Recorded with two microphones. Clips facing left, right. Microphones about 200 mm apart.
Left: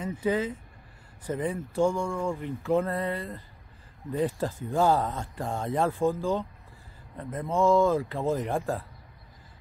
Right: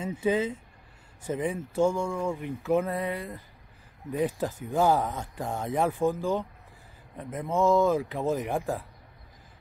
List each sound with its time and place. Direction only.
0.1 s speech: 10° right (ahead or behind)
1.4 s speech: 20° right (ahead or behind)
1.9 s speech: 5° right (ahead or behind)